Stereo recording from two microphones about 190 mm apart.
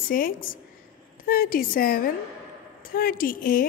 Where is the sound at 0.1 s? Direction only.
45° left (ahead or behind).